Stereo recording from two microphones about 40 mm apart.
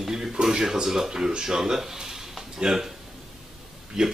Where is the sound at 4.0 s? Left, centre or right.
Centre.